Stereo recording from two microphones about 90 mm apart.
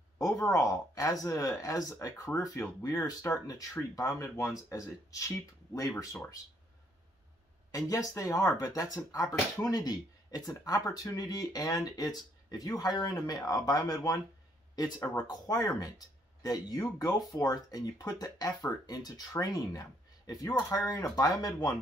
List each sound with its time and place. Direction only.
0.2 s speech: 35° left (ahead or behind)
7.7 s speech: 40° left (ahead or behind)